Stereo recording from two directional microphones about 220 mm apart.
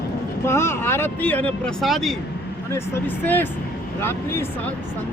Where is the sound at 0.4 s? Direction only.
10° left (ahead or behind).